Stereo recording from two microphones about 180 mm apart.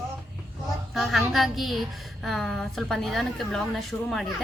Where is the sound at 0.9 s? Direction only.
Centre (ahead or behind).